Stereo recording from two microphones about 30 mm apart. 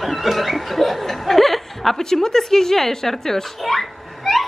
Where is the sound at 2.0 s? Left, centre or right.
Centre.